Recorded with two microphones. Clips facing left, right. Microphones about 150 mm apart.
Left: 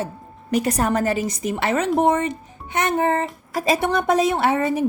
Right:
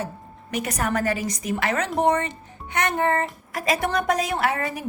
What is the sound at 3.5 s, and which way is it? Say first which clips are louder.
A woman's voice: left 4 dB; 25° left (ahead or behind).